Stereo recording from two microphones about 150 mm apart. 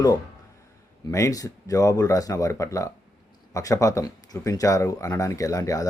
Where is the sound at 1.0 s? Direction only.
20° left (ahead or behind).